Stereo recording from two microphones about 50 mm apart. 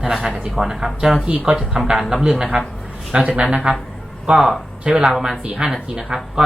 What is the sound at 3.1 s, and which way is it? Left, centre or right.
Speech, right.